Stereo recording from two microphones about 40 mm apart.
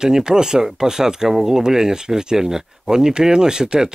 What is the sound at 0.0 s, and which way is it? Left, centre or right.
Speech, centre.